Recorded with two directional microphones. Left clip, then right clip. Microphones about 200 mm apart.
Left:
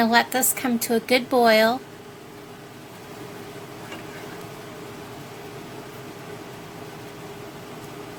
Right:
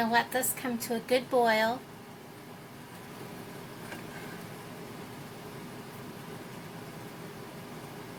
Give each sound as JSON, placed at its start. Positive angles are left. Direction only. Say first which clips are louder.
{"t": 0.0, "sound": "a woman's voice", "louder": "left 8 dB", "side_deg": 45}